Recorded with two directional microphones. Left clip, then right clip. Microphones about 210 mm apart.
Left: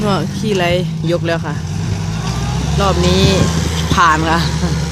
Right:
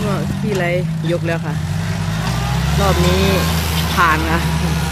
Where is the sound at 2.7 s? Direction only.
Centre (ahead or behind).